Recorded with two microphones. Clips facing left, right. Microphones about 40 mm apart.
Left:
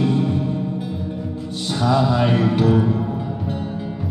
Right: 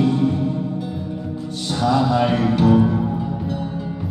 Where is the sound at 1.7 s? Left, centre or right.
Centre.